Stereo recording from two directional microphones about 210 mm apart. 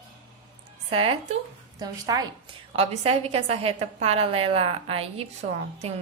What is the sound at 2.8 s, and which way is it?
A woman's voice, 30° right (ahead or behind).